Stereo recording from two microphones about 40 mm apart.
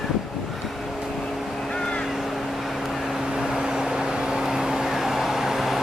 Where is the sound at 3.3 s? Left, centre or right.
Centre.